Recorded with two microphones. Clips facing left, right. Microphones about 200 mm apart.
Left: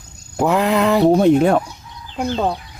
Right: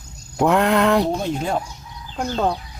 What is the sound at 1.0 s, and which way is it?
Speech, 60° left (ahead or behind).